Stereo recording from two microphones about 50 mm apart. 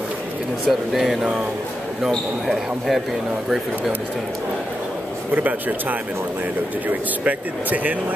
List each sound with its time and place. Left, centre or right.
0.7 s speech: centre
2.4 s speech: centre
5.3 s speech: right